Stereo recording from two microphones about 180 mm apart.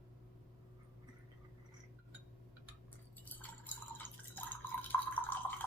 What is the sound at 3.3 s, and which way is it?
Drip, 10° left (ahead or behind).